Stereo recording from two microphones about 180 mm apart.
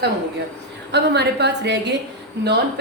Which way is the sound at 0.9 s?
70° right (ahead or behind).